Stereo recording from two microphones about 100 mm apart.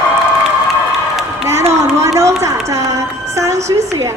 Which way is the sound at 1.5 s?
25° right (ahead or behind).